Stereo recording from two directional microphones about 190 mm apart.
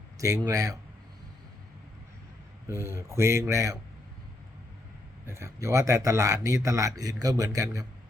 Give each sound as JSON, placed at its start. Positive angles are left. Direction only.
{"t": 0.2, "sound": "speech", "side_deg": -15}
{"t": 2.6, "sound": "speech", "side_deg": -15}
{"t": 5.2, "sound": "speech", "side_deg": -15}